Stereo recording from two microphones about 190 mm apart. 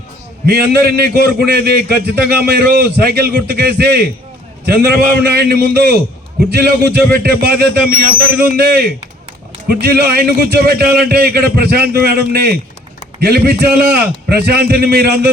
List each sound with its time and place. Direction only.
0.4 s a man's voice: 55° right (ahead or behind)